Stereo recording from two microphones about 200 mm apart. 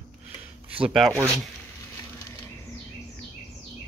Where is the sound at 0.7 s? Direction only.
Centre (ahead or behind).